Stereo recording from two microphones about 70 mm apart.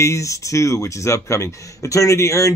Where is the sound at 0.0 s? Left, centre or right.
Left.